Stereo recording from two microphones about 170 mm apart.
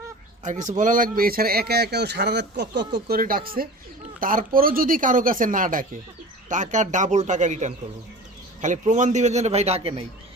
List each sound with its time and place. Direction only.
0.7 s speech: 50° right (ahead or behind)